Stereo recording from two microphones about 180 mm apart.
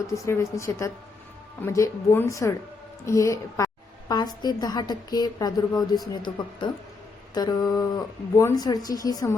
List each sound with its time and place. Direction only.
0.3 s a woman's voice: 15° left (ahead or behind)
4.1 s a sound: 20° left (ahead or behind)
4.4 s speech: 20° left (ahead or behind)